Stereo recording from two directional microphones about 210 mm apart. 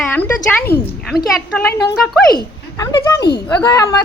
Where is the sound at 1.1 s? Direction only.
45° left (ahead or behind).